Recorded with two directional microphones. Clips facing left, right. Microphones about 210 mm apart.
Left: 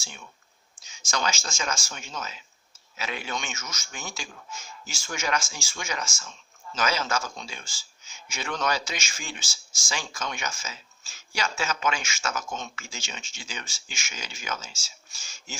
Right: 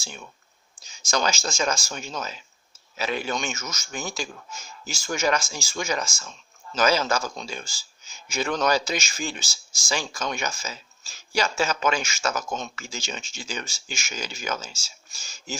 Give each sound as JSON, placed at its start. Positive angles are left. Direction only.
{"t": 0.8, "sound": "a man's voice", "side_deg": -35}